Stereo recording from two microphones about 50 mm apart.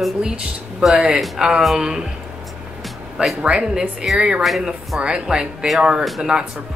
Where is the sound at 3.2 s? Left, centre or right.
Centre.